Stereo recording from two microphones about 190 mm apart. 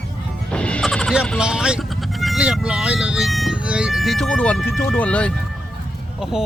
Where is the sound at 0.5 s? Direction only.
5° left (ahead or behind).